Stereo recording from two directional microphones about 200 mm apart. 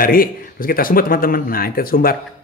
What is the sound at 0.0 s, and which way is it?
A man's voice, 45° left (ahead or behind).